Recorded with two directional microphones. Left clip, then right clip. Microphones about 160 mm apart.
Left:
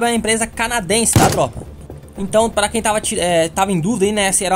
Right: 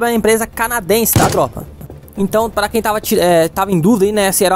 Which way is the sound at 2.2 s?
40° right (ahead or behind).